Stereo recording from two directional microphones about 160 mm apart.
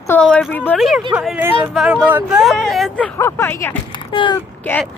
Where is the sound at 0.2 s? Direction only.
5° left (ahead or behind).